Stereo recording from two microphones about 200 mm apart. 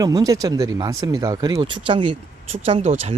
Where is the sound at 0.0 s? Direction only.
20° right (ahead or behind).